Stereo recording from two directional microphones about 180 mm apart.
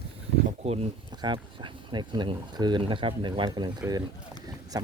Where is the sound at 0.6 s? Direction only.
35° right (ahead or behind).